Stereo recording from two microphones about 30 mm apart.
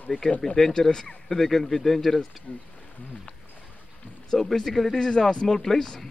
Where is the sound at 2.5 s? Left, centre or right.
Left.